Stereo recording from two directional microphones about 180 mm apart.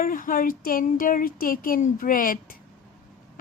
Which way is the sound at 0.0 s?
50° left (ahead or behind).